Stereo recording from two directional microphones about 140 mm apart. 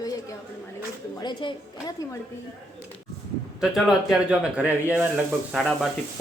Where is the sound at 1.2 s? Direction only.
35° left (ahead or behind).